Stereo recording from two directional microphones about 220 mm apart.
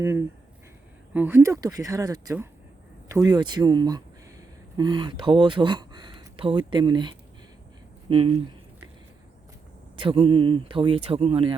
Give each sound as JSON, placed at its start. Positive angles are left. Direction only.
{"t": 0.0, "sound": "speech", "side_deg": -10}
{"t": 9.9, "sound": "speech", "side_deg": -25}